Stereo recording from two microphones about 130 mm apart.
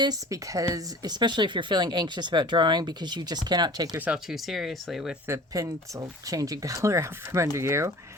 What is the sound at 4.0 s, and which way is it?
Speech, 5° right (ahead or behind).